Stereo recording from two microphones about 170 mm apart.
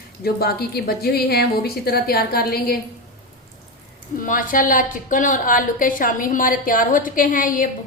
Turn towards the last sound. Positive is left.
turn(degrees=55)  # may be behind; listen again after turning